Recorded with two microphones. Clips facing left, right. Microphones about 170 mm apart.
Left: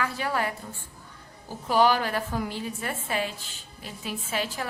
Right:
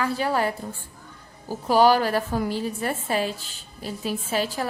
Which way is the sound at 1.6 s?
35° right (ahead or behind).